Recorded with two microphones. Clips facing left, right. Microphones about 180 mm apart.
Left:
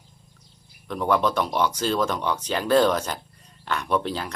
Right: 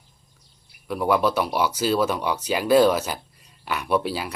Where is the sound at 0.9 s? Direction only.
10° right (ahead or behind).